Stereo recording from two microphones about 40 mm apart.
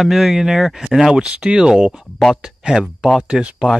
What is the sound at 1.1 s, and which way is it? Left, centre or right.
Speech, right.